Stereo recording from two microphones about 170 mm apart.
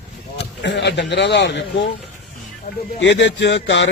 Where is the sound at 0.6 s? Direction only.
90° left.